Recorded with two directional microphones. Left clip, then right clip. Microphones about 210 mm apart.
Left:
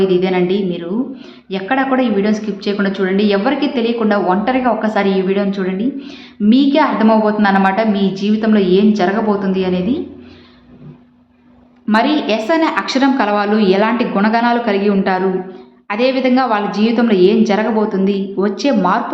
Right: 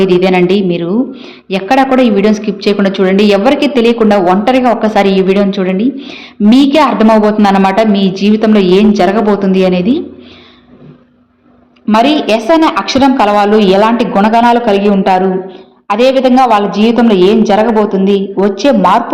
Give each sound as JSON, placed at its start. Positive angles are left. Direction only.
{"t": 0.0, "sound": "a woman's voice", "side_deg": -30}
{"t": 11.9, "sound": "a woman's voice", "side_deg": -25}